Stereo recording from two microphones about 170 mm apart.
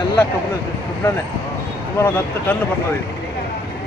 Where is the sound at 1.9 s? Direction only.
15° left (ahead or behind).